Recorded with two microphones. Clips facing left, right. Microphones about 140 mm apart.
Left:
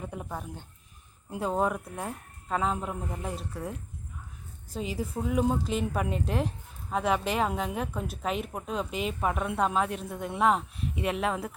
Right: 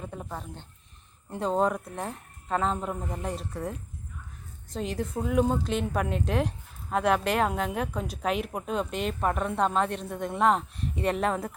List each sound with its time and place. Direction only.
0.0 s a woman's voice: 10° left (ahead or behind)